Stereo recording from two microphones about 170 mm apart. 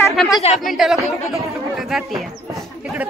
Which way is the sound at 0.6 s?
Centre (ahead or behind).